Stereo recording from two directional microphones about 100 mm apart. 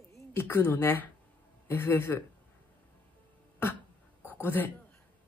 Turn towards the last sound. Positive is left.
turn(degrees=20)  # may be behind; listen again after turning